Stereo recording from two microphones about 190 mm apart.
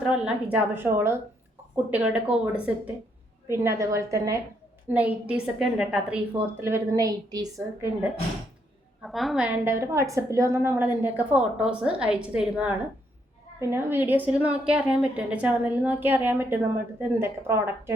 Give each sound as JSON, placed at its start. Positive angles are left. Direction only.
{"t": 0.1, "sound": "a woman's voice", "side_deg": -5}
{"t": 9.0, "sound": "a woman's voice", "side_deg": 0}